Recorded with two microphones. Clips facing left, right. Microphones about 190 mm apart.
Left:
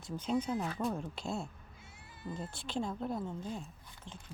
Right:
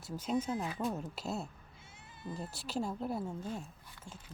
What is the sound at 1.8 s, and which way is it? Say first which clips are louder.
Sheep: left 1 dB; 25° right (ahead or behind).